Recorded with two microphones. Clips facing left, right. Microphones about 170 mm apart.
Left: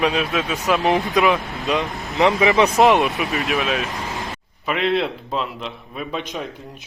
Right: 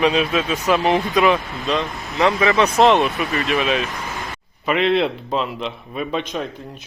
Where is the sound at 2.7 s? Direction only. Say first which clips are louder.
Even; 5° left (ahead or behind).